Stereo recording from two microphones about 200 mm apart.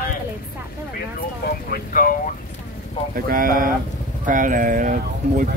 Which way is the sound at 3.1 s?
45° right (ahead or behind).